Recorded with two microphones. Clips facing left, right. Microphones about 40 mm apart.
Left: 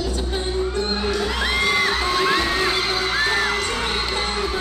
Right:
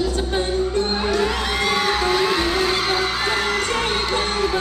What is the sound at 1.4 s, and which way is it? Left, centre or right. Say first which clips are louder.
Music: left 1 dB; centre.